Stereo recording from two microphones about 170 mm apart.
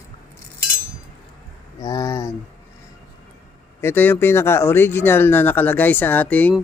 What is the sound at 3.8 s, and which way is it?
Speech, 15° left (ahead or behind).